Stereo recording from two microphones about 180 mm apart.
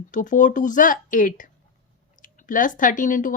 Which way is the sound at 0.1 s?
45° left (ahead or behind).